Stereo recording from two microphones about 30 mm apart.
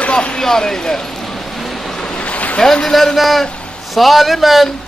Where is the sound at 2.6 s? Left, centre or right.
Centre.